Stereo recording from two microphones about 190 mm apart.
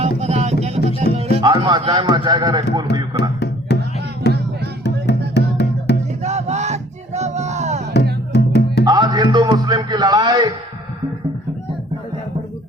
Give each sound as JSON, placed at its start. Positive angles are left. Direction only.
{"t": 0.0, "sound": "music", "side_deg": -35}
{"t": 1.1, "sound": "speech", "side_deg": -25}
{"t": 3.2, "sound": "music", "side_deg": 60}
{"t": 6.2, "sound": "music", "side_deg": -35}
{"t": 8.3, "sound": "music", "side_deg": 65}
{"t": 8.8, "sound": "music", "side_deg": -20}